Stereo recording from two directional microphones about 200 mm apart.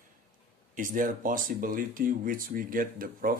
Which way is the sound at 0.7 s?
40° right (ahead or behind).